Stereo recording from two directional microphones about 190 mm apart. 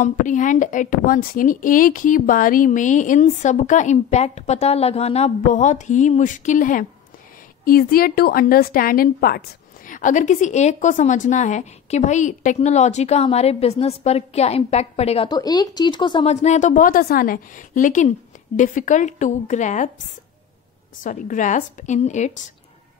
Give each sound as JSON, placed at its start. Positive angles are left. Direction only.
{"t": 0.0, "sound": "a woman's voice", "side_deg": 40}
{"t": 21.0, "sound": "a woman's voice", "side_deg": 45}